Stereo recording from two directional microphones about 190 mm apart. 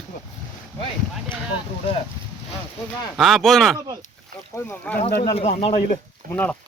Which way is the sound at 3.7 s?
20° right (ahead or behind).